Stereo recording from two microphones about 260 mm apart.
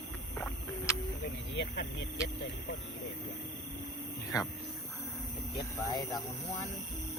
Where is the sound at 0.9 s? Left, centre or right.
Centre.